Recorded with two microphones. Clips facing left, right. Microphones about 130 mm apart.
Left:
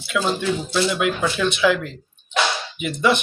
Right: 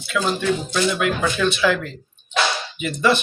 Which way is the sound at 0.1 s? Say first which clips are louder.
Right 1 dB; 5° left (ahead or behind).